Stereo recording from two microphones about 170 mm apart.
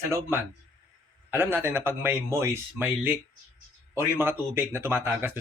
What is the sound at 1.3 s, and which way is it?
A man's voice, 10° right (ahead or behind).